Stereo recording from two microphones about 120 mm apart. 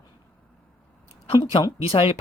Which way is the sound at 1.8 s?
50° left (ahead or behind).